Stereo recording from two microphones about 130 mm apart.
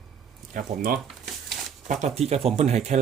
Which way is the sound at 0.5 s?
90° right.